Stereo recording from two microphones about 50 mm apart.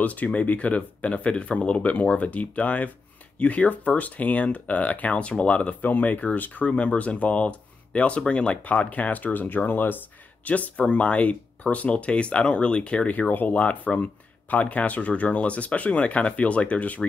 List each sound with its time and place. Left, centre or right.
0.0 s speech: left